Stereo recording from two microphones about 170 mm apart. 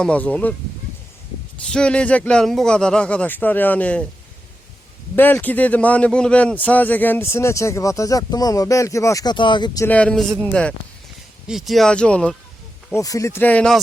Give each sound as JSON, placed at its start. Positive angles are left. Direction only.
{"t": 0.0, "sound": "a man's voice", "side_deg": 5}
{"t": 1.6, "sound": "a man's voice", "side_deg": 5}
{"t": 5.1, "sound": "a man's voice", "side_deg": 10}
{"t": 9.8, "sound": "a man's voice", "side_deg": 10}
{"t": 13.0, "sound": "a man's voice", "side_deg": 20}